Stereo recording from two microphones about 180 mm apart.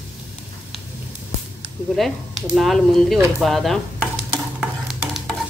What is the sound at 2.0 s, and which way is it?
Sizzle, centre (ahead or behind).